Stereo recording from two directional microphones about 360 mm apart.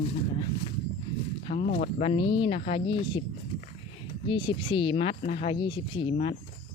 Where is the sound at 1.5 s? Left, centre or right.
Centre.